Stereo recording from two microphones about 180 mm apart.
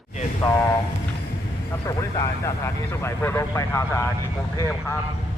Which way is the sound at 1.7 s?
20° left (ahead or behind).